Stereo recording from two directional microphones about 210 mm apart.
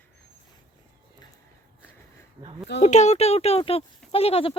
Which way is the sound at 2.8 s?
35° left (ahead or behind).